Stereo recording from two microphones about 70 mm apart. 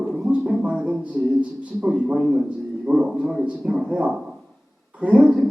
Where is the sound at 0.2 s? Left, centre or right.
Right.